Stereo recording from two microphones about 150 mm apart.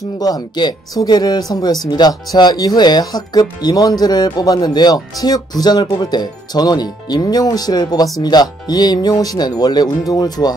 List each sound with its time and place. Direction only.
0.2 s speech: 25° left (ahead or behind)